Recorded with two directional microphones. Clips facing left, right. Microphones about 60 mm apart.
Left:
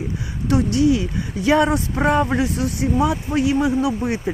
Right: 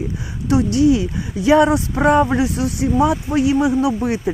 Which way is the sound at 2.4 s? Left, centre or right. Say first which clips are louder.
Right 2 dB; left.